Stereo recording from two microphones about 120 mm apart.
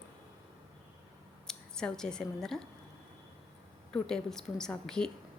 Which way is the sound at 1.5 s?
5° left (ahead or behind).